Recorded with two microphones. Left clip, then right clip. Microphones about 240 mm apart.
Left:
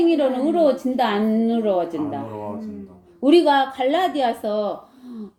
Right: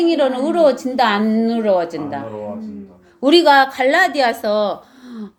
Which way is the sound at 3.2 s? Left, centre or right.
Right.